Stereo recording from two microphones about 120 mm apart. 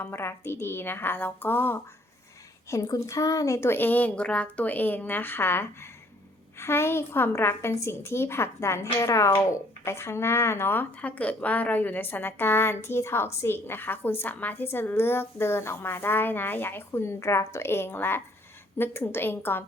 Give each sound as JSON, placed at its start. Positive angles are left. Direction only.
{"t": 0.0, "sound": "speech", "side_deg": 20}
{"t": 2.6, "sound": "a woman's voice", "side_deg": 30}